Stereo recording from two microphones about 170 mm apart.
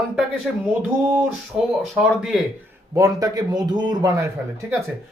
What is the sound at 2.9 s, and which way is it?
A man's voice, 20° right (ahead or behind).